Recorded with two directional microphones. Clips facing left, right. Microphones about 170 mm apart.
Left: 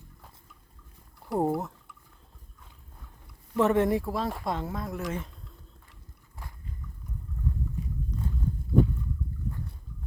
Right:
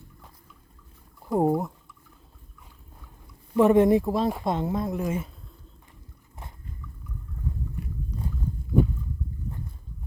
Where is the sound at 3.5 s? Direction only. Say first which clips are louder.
Right 6 dB; 15° right (ahead or behind).